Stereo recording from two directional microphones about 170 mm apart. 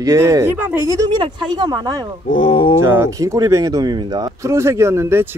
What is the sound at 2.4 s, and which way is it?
Speech, 30° left (ahead or behind).